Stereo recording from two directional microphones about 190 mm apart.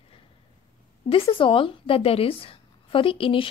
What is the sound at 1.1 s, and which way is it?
A woman's voice, 30° left (ahead or behind).